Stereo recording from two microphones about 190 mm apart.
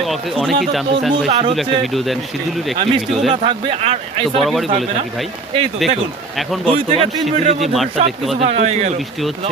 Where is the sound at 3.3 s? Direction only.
30° right (ahead or behind).